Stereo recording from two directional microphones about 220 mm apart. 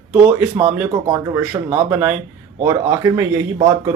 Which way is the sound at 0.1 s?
5° right (ahead or behind).